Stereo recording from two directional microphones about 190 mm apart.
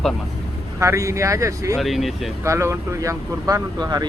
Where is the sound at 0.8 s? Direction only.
15° right (ahead or behind).